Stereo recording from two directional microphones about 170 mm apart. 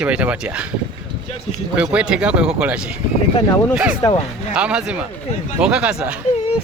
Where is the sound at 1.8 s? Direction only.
5° right (ahead or behind).